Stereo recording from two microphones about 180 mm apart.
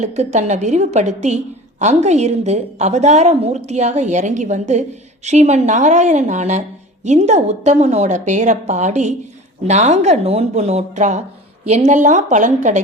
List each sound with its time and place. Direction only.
0.0 s a woman's voice: 40° right (ahead or behind)